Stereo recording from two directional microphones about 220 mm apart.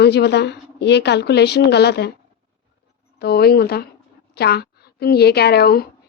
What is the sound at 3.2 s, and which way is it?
A woman's voice, 45° left (ahead or behind).